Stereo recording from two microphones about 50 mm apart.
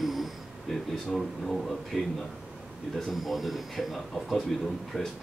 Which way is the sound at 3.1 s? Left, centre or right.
Centre.